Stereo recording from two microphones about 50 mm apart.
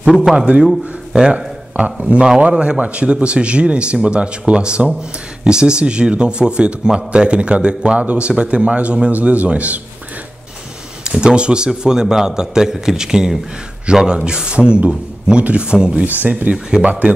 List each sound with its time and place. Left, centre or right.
0.0 s a man's voice: centre
1.2 s speech: right
2.2 s a man's voice: centre
11.1 s a man's voice: centre